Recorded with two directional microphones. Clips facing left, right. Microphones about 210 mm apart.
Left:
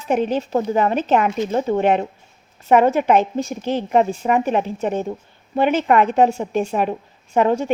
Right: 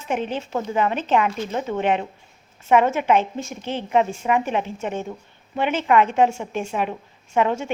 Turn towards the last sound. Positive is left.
turn(degrees=40)  # may be behind; listen again after turning